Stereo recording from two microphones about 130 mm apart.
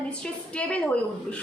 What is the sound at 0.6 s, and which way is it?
Speech, 10° left (ahead or behind).